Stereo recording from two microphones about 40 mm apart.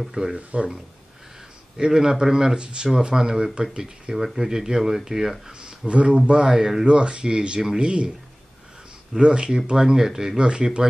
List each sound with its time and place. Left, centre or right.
0.1 s speech: centre
0.4 s speech: right
1.8 s speech: centre
4.1 s speech: centre
5.5 s speech: right
6.5 s speech: centre
6.9 s speech: right
9.2 s speech: right
9.8 s speech: centre